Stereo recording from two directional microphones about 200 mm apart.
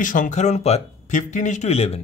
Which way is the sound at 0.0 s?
40° left (ahead or behind).